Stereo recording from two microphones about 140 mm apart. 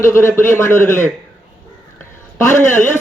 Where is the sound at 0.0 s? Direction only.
20° left (ahead or behind).